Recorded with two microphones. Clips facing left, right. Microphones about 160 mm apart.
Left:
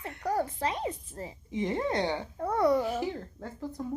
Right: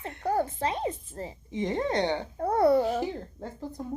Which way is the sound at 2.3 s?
35° right (ahead or behind).